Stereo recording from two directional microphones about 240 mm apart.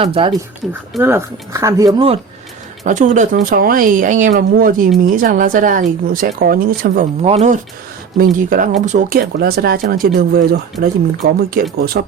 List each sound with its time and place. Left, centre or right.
0.0 s speech: right
0.7 s speech: centre
2.8 s speech: right